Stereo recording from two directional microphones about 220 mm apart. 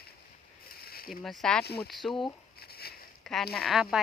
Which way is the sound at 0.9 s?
45° left (ahead or behind).